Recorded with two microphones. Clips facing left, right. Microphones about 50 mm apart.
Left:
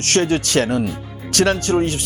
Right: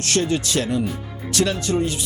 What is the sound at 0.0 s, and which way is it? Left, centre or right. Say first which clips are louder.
Speech: left 4 dB; left.